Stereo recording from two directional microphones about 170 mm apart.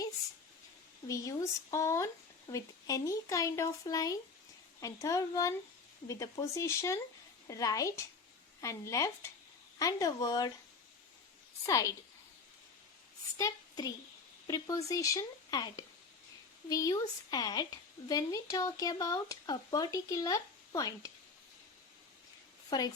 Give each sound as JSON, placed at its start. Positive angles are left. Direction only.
{"t": 1.0, "sound": "speech", "side_deg": 20}
{"t": 11.6, "sound": "speech", "side_deg": 20}
{"t": 13.3, "sound": "a woman's voice", "side_deg": 20}